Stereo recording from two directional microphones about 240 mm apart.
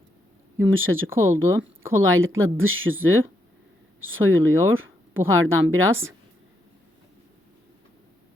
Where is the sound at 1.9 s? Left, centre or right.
Right.